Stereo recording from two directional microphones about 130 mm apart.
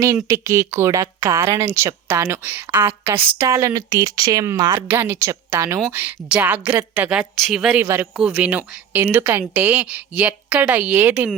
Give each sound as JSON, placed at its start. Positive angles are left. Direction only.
{"t": 0.3, "sound": "a woman's voice", "side_deg": -20}
{"t": 7.8, "sound": "a woman's voice", "side_deg": -15}